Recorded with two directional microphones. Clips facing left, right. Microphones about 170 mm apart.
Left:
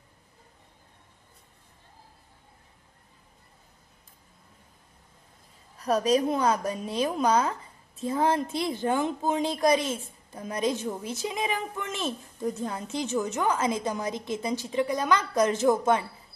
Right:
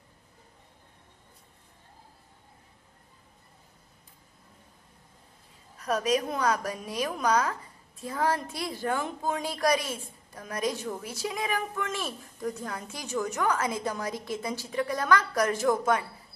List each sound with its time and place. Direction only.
5.8 s a woman's voice: 35° left (ahead or behind)